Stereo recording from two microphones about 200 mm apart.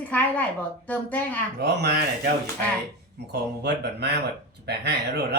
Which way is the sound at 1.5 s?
55° right (ahead or behind).